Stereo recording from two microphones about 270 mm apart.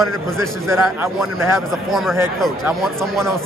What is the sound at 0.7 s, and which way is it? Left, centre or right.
Speech, centre.